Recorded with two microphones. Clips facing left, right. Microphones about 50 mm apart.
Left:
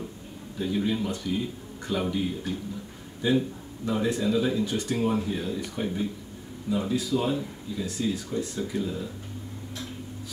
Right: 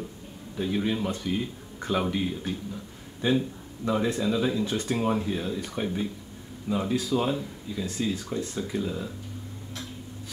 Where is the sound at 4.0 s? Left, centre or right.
Right.